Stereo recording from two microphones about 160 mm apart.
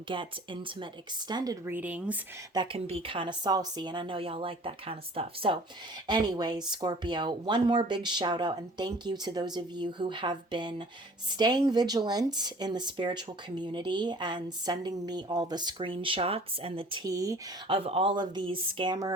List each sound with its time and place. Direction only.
0.1 s speech: 30° right (ahead or behind)
1.6 s speech: 10° right (ahead or behind)
2.5 s speech: 30° right (ahead or behind)
17.0 s speech: 20° right (ahead or behind)
17.7 s speech: 35° right (ahead or behind)